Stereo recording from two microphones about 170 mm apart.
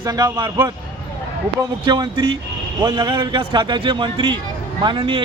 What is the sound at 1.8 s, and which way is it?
Speech, 25° right (ahead or behind).